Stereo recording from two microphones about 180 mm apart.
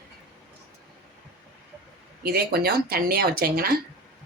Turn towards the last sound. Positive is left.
turn(degrees=-60)  # may be behind; listen again after turning